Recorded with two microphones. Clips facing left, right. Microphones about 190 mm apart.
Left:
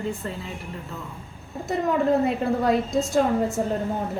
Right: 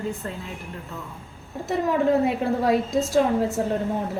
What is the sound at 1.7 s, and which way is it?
A woman's voice, centre (ahead or behind).